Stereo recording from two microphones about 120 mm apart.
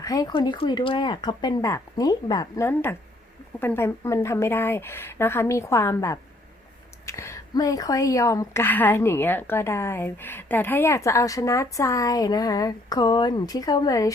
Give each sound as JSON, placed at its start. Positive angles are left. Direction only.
{"t": 0.0, "sound": "speech", "side_deg": 30}
{"t": 2.6, "sound": "a woman's voice", "side_deg": 20}